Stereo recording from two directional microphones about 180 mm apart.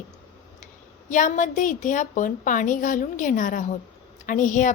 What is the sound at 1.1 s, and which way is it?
A woman's voice, 45° left (ahead or behind).